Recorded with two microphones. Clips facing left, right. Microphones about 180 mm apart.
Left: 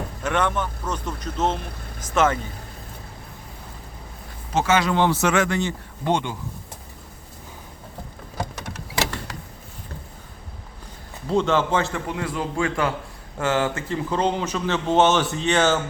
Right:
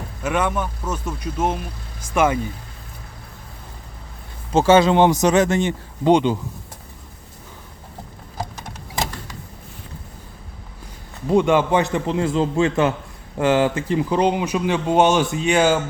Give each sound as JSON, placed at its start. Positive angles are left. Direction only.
{"t": 0.2, "sound": "speech", "side_deg": -10}
{"t": 4.5, "sound": "a man's voice", "side_deg": -30}
{"t": 5.2, "sound": "speech", "side_deg": -40}
{"t": 5.5, "sound": "a man's voice", "side_deg": -20}
{"t": 8.4, "sound": "a sound", "side_deg": 65}
{"t": 11.3, "sound": "a man's voice", "side_deg": -15}